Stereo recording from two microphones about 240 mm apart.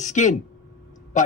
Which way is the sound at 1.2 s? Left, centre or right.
Left.